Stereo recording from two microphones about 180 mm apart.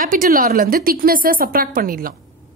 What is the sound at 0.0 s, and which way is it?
Speech, 50° right (ahead or behind).